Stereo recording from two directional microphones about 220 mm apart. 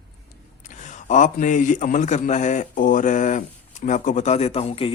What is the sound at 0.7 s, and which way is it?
A man's voice, 35° left (ahead or behind).